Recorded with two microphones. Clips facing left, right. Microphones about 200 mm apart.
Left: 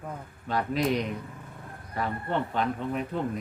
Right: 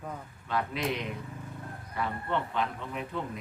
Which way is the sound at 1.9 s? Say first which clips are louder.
Left 2 dB; 40° left (ahead or behind).